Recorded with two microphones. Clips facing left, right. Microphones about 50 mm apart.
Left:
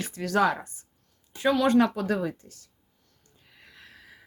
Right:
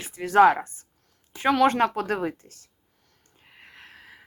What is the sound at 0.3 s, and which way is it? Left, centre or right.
Speech, right.